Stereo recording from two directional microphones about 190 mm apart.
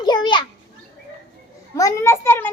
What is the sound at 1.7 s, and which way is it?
Speech, 15° left (ahead or behind).